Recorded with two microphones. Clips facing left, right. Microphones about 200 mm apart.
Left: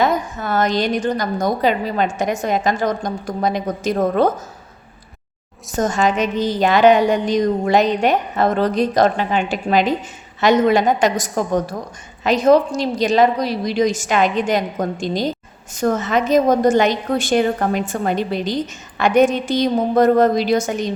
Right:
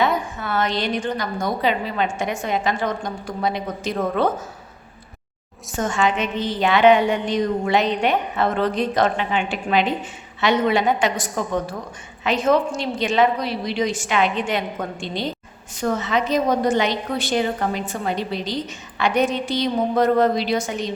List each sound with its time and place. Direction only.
0.0 s a woman's voice: 40° left (ahead or behind)
5.7 s a woman's voice: 40° left (ahead or behind)